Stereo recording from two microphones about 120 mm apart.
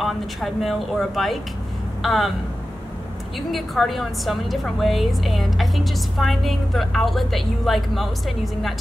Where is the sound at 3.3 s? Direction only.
Centre (ahead or behind).